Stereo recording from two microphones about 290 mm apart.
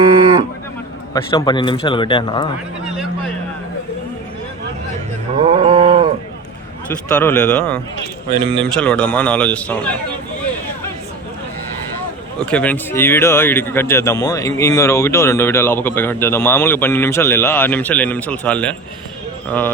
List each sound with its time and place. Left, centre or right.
1.1 s speech: centre
2.8 s a sound: centre
5.4 s a sound: centre
7.1 s a man's voice: centre
8.3 s a man's voice: centre
8.7 s a man's voice: centre
12.4 s speech: centre